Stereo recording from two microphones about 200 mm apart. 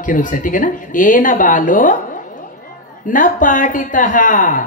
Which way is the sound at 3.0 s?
40° left (ahead or behind).